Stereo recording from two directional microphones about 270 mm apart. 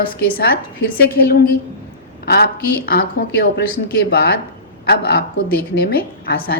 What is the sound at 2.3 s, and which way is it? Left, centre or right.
A woman's voice, left.